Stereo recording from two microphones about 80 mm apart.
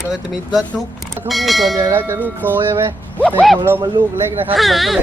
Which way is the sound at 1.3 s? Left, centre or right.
Centre.